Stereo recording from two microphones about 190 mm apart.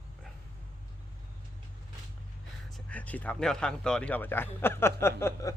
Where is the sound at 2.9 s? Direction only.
10° left (ahead or behind).